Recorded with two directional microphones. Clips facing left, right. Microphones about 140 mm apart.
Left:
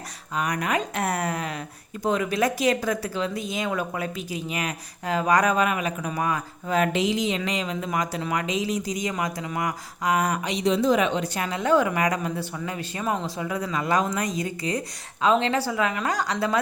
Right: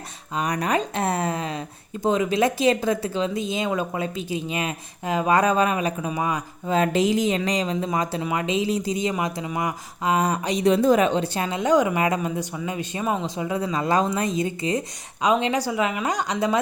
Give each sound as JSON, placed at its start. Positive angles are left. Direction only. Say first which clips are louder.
{"t": 0.3, "sound": "speech", "louder": "right 2 dB", "side_deg": -30}
{"t": 6.1, "sound": "speech", "louder": "right 1 dB", "side_deg": -20}
{"t": 6.9, "sound": "speech", "louder": "right 4 dB", "side_deg": -45}
{"t": 10.6, "sound": "speech", "louder": "right 3 dB", "side_deg": -55}